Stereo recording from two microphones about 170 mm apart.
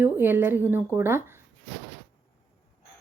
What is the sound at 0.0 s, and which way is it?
Speech, 10° right (ahead or behind).